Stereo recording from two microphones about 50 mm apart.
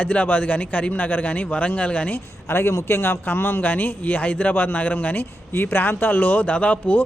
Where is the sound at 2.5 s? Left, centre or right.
Left.